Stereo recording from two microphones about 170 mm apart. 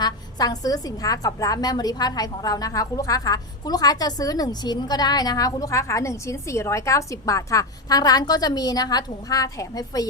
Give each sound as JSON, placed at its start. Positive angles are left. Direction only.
{"t": 0.0, "sound": "a woman's voice", "side_deg": 25}